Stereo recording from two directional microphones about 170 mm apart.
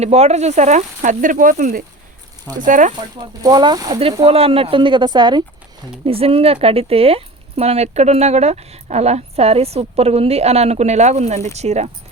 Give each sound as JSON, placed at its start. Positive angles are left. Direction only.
{"t": 0.0, "sound": "speech", "side_deg": -40}
{"t": 2.9, "sound": "speech", "side_deg": -25}